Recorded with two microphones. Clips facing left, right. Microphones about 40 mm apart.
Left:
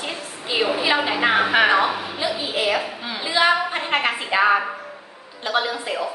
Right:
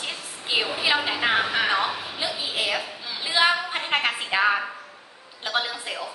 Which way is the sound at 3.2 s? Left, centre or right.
Centre.